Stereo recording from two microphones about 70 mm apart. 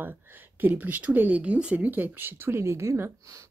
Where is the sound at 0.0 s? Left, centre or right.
Right.